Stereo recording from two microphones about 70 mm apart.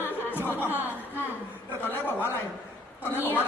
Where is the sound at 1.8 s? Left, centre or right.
Left.